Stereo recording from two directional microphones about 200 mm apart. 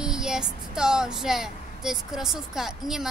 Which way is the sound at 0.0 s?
5° right (ahead or behind).